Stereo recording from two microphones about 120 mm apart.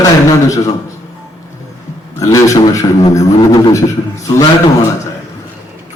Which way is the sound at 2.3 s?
25° left (ahead or behind).